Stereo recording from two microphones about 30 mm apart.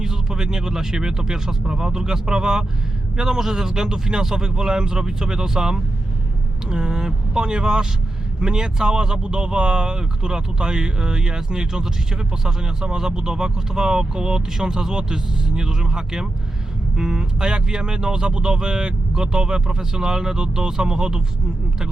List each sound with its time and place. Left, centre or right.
0.0 s speech: centre